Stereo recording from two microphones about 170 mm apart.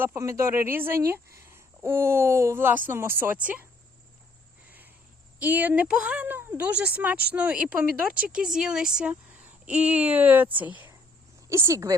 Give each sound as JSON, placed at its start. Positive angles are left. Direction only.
{"t": 0.0, "sound": "speech", "side_deg": -15}
{"t": 5.4, "sound": "speech", "side_deg": -10}